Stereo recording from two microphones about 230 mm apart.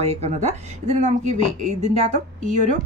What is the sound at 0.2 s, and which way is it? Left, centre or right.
A woman's voice, right.